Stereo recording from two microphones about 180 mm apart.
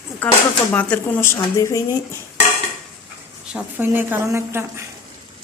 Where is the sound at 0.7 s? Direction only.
10° left (ahead or behind).